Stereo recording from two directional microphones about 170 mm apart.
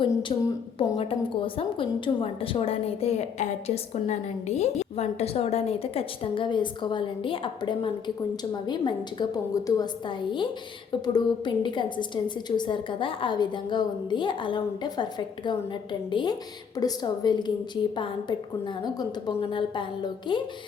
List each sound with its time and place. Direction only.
0.0 s a woman's voice: 30° left (ahead or behind)